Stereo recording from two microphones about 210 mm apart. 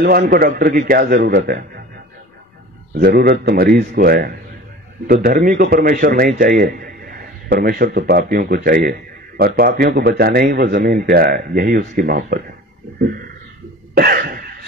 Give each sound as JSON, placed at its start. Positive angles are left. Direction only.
{"t": 0.0, "sound": "a man's voice", "side_deg": -45}
{"t": 2.9, "sound": "a man's voice", "side_deg": -45}
{"t": 13.9, "sound": "cough", "side_deg": -45}